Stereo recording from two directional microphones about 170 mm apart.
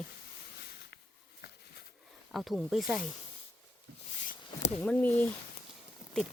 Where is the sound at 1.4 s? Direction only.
70° left (ahead or behind).